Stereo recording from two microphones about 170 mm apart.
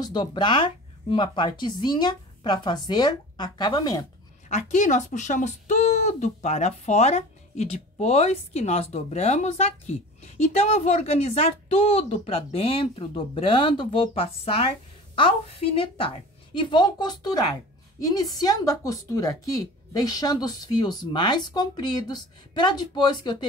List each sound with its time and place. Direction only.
0.0 s speech: 25° left (ahead or behind)
4.5 s speech: 45° left (ahead or behind); by 23.3 s 25° left (ahead or behind)